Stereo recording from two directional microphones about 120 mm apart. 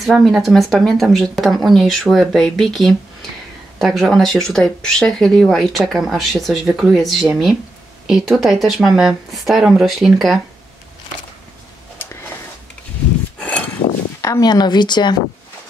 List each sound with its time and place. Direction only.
0.0 s speech: centre (ahead or behind)
13.4 s a sound: 10° left (ahead or behind)
14.2 s a woman's voice: 30° left (ahead or behind)